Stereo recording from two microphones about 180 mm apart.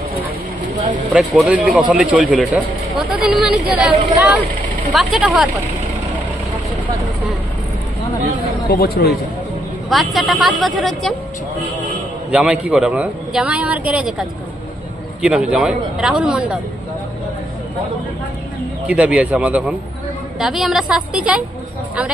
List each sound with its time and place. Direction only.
1.1 s a man's voice: 5° right (ahead or behind)
4.9 s a man's voice: centre (ahead or behind)
8.6 s speech: 55° left (ahead or behind)
9.8 s a man's voice: centre (ahead or behind)
12.3 s a man's voice: 5° right (ahead or behind)
15.2 s a man's voice: 5° right (ahead or behind)
18.9 s a man's voice: 5° right (ahead or behind)